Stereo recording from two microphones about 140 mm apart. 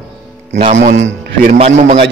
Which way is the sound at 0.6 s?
60° right (ahead or behind).